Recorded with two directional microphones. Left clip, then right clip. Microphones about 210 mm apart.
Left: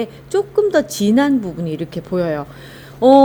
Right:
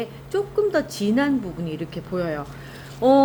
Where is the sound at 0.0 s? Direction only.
40° left (ahead or behind).